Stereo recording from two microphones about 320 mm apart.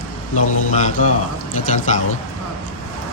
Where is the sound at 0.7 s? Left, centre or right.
Left.